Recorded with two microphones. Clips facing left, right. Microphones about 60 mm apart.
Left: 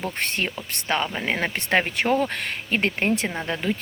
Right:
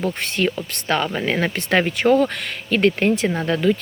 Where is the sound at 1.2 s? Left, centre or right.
Centre.